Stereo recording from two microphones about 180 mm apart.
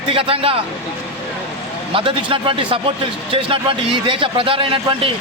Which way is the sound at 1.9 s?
30° right (ahead or behind).